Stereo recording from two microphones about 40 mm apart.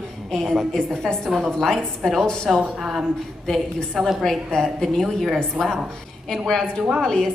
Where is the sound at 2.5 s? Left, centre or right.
Centre.